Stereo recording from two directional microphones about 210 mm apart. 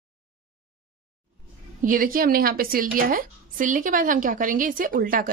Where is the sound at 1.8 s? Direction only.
40° right (ahead or behind).